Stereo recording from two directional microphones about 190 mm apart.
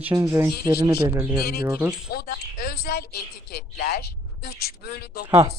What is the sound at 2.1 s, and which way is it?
A woman's voice, 55° left (ahead or behind).